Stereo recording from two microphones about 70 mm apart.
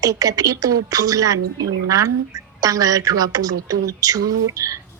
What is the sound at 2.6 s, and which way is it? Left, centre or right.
A woman's voice, right.